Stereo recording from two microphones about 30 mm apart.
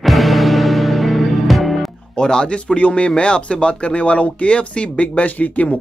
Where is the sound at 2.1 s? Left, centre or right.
Left.